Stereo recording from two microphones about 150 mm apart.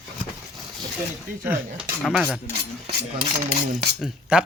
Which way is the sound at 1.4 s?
15° right (ahead or behind).